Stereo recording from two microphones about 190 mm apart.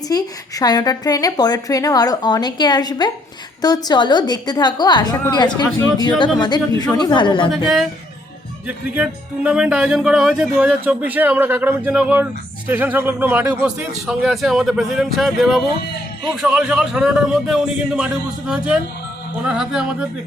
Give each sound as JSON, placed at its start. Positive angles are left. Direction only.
{"t": 0.1, "sound": "a woman's voice", "side_deg": 20}
{"t": 7.5, "sound": "speech", "side_deg": 0}